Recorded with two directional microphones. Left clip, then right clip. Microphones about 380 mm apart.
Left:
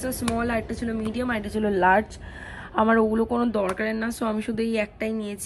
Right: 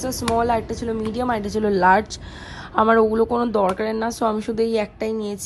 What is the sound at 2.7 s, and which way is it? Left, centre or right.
Speech, left.